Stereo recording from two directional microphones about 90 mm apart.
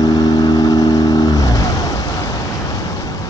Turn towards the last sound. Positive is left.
turn(degrees=40)  # may be behind; listen again after turning